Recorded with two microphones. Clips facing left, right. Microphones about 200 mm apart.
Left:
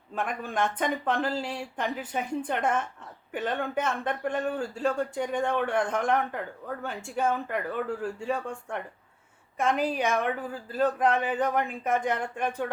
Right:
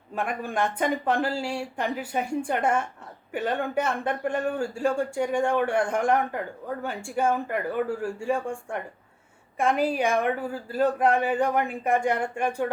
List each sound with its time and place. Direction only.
0.1 s speech: 10° right (ahead or behind)
11.1 s speech: 45° right (ahead or behind)
11.3 s speech: 10° right (ahead or behind)